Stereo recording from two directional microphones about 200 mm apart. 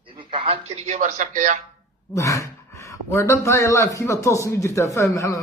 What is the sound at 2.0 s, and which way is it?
A man's voice, 15° left (ahead or behind).